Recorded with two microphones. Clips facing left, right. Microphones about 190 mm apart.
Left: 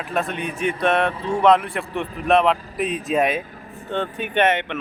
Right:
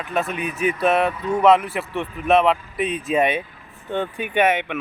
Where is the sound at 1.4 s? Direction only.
5° right (ahead or behind).